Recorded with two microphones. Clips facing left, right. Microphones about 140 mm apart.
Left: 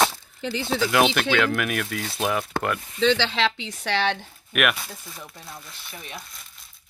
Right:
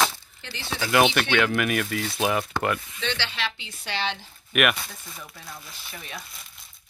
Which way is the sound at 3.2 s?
90° left.